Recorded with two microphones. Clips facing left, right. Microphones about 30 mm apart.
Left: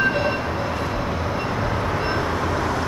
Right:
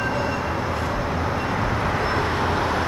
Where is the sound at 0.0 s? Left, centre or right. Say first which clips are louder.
Left 4 dB; left.